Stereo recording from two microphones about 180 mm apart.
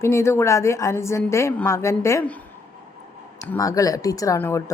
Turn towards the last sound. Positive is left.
turn(degrees=15)  # may be behind; listen again after turning